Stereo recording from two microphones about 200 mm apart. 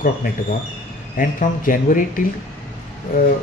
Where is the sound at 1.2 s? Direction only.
40° left (ahead or behind).